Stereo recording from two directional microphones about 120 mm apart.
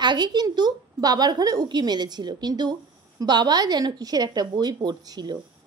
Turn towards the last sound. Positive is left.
turn(degrees=-35)  # may be behind; listen again after turning